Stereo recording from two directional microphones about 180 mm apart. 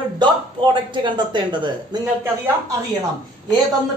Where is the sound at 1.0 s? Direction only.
25° right (ahead or behind).